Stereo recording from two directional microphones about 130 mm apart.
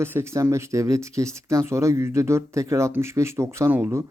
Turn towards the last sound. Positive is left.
turn(degrees=-20)  # may be behind; listen again after turning